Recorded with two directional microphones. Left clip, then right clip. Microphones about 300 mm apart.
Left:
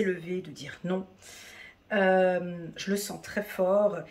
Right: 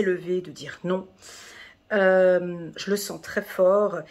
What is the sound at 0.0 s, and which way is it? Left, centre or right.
Speech, centre.